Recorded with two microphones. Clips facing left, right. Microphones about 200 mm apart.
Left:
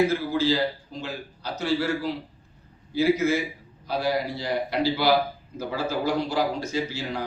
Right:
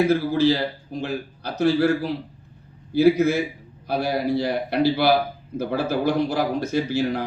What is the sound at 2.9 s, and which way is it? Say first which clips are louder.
A man's voice: right 5 dB; 60° right (ahead or behind).